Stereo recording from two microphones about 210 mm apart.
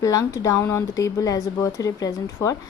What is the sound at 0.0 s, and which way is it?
Speech, 15° left (ahead or behind).